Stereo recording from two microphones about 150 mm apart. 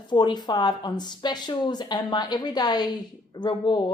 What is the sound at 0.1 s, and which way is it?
A woman's voice, 30° left (ahead or behind).